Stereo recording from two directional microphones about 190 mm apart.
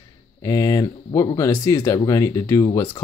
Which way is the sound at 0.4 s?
20° left (ahead or behind).